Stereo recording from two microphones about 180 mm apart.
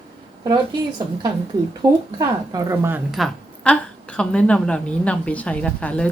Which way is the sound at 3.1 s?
5° left (ahead or behind).